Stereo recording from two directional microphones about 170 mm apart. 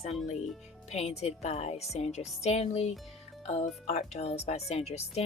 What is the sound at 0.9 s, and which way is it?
Speech, 40° left (ahead or behind).